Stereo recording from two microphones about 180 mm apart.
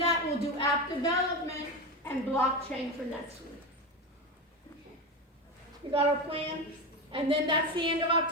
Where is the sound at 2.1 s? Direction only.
10° left (ahead or behind).